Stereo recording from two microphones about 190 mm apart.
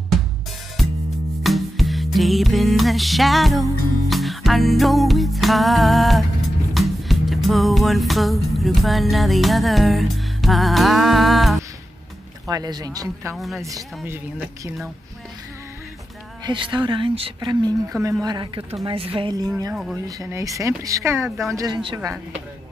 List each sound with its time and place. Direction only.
1.4 s music: centre (ahead or behind)
12.4 s speech: 20° right (ahead or behind)
13.3 s speech: centre (ahead or behind)
13.7 s speech: 15° right (ahead or behind)
16.4 s speech: 25° right (ahead or behind)
19.7 s speech: 5° right (ahead or behind)
20.1 s speech: 15° right (ahead or behind)